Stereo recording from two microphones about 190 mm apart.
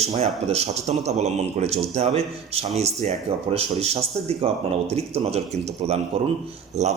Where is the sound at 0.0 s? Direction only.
35° right (ahead or behind).